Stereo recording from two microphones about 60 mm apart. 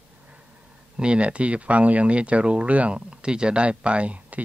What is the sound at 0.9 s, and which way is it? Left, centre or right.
Speech, centre.